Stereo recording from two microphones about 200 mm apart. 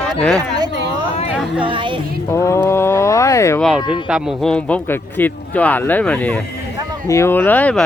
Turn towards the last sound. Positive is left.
turn(degrees=10)  # may be behind; listen again after turning